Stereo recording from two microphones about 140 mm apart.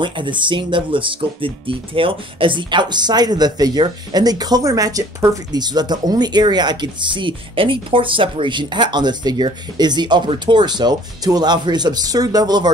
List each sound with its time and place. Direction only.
0.0 s speech: 35° right (ahead or behind)